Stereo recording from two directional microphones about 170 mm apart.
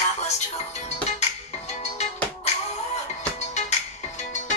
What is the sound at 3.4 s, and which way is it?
Music, 40° left (ahead or behind).